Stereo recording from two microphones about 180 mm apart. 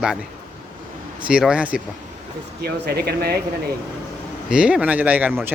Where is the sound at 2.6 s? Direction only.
65° right (ahead or behind).